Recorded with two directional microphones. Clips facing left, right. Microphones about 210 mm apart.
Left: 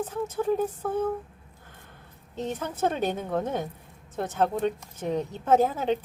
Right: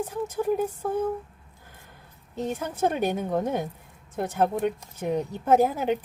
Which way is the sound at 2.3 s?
10° right (ahead or behind).